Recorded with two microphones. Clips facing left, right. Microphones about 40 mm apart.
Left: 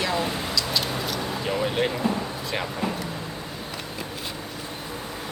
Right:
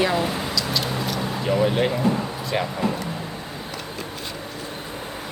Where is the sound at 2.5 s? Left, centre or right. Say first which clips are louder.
Right 5 dB; centre.